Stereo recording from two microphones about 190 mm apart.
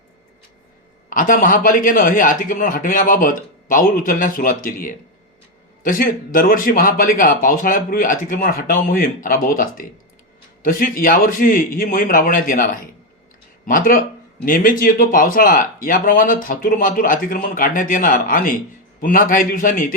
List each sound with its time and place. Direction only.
1.1 s speech: 45° left (ahead or behind)